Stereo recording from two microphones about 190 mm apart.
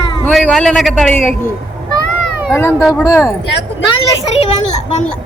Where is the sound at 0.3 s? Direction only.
5° left (ahead or behind).